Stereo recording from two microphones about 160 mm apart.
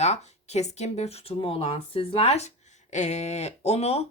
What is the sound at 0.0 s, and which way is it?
Speech, 45° left (ahead or behind).